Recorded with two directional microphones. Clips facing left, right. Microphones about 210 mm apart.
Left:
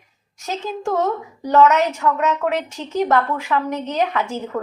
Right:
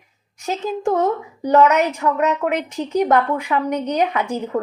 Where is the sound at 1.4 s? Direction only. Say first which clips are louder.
Even; 15° right (ahead or behind).